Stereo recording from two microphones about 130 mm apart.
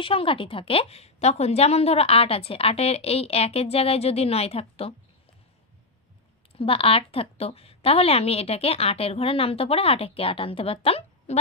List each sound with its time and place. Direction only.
0.0 s a woman's voice: 45° left (ahead or behind)
6.5 s a woman's voice: 45° left (ahead or behind)